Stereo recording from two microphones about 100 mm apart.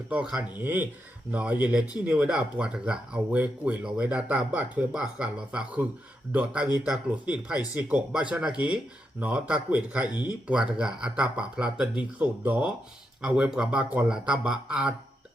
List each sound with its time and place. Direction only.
0.1 s speech: 10° right (ahead or behind)
13.2 s speech: 5° right (ahead or behind)